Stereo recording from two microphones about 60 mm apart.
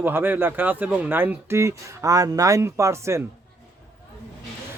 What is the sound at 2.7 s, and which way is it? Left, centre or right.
Speech, right.